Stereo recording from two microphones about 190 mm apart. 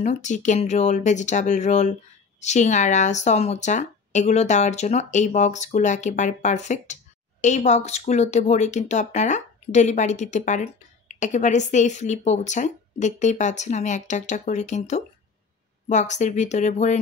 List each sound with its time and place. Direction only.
0.0 s speech: 40° left (ahead or behind)